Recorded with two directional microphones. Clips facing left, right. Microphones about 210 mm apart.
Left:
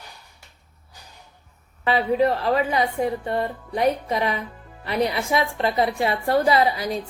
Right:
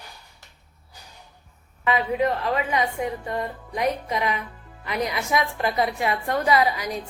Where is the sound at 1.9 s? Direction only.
35° left (ahead or behind).